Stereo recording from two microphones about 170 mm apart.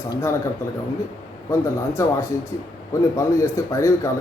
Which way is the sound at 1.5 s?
15° left (ahead or behind).